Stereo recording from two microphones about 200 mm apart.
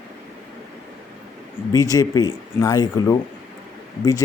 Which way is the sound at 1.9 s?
20° left (ahead or behind).